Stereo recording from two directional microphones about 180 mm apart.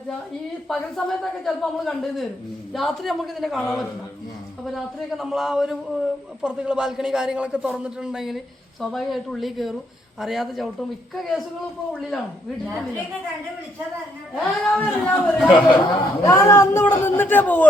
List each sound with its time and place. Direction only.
0.7 s a man's voice: centre (ahead or behind)
14.3 s a man's voice: 5° left (ahead or behind)
16.2 s a man's voice: 15° left (ahead or behind)